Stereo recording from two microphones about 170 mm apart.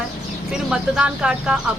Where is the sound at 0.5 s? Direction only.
5° right (ahead or behind).